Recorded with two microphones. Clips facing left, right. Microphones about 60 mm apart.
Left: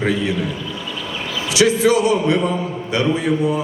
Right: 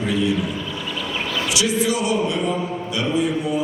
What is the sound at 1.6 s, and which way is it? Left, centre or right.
Speech, left.